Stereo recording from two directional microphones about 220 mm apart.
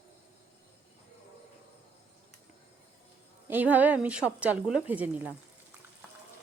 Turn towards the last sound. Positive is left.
turn(degrees=-5)  # may be behind; listen again after turning